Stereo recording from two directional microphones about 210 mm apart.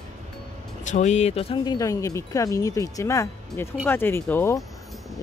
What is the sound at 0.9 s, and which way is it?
Speech, 35° left (ahead or behind).